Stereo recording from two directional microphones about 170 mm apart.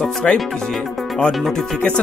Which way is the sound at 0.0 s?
5° left (ahead or behind).